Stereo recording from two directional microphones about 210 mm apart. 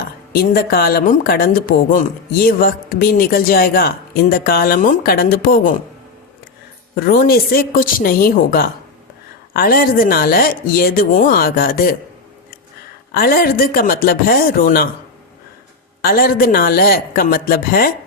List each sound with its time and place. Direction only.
0.3 s speech: 45° left (ahead or behind)
6.9 s speech: 45° left (ahead or behind)
13.1 s speech: 45° left (ahead or behind)
16.0 s speech: 45° left (ahead or behind)